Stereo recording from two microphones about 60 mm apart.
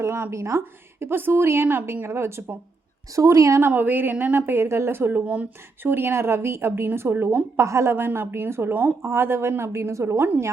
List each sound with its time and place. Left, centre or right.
0.0 s a woman's voice: right
3.2 s a woman's voice: right
3.7 s a woman's voice: right
5.2 s speech: right
5.8 s a woman's voice: right
7.5 s a woman's voice: right
8.7 s a woman's voice: right
9.0 s a woman's voice: right